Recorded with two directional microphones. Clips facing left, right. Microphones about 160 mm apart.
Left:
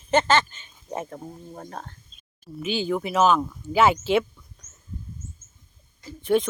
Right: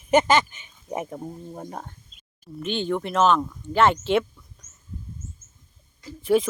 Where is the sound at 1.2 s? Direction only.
5° right (ahead or behind).